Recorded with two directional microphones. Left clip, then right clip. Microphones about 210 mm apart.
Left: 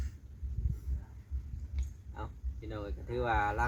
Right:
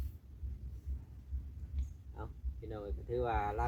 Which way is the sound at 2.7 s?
55° left (ahead or behind).